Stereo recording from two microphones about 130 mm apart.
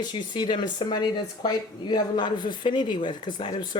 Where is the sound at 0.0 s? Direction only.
35° left (ahead or behind).